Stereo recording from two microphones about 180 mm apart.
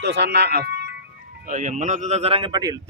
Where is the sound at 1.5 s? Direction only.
45° right (ahead or behind); by 2.7 s 20° right (ahead or behind).